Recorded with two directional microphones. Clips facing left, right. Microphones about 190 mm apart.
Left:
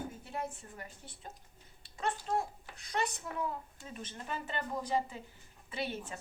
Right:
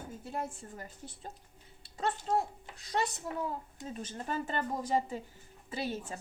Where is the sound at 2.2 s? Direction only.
20° right (ahead or behind); by 6.2 s 40° right (ahead or behind).